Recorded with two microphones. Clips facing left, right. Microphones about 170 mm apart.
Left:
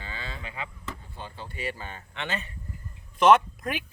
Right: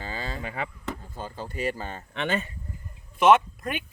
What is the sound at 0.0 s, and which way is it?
Chop, 40° right (ahead or behind).